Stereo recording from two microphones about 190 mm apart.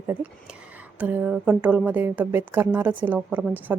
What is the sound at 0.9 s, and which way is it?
A woman's voice, 10° right (ahead or behind).